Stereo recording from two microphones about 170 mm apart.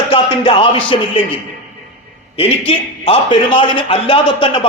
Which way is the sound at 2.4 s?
30° left (ahead or behind).